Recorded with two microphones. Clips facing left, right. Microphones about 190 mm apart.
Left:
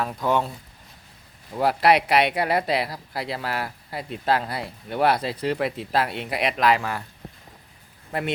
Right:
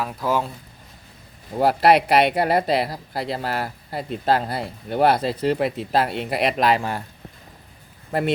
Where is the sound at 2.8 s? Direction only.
25° right (ahead or behind).